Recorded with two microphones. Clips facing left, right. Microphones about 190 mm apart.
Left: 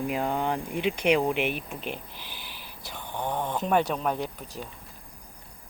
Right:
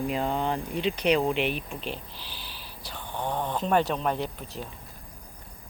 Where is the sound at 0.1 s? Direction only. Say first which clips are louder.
Even; 10° left (ahead or behind).